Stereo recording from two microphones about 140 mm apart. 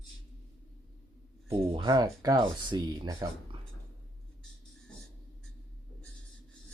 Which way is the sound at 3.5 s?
40° right (ahead or behind).